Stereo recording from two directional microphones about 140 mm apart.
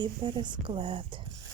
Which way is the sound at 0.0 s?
35° right (ahead or behind).